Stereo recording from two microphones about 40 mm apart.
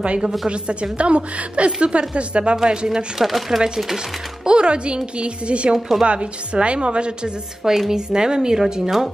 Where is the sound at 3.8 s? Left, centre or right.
Centre.